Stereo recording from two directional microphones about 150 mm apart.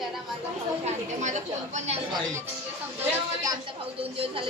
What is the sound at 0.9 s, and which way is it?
A woman's voice, 50° right (ahead or behind).